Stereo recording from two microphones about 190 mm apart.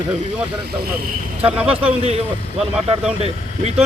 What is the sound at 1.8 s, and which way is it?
A man's voice, 30° right (ahead or behind).